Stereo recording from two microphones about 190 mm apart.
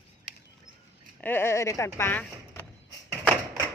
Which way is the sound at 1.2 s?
10° left (ahead or behind).